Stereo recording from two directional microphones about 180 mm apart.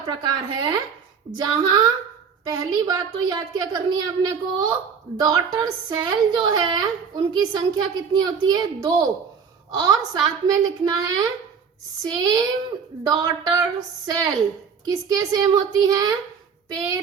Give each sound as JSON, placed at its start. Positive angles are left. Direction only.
{"t": 0.2, "sound": "a woman's voice", "side_deg": -25}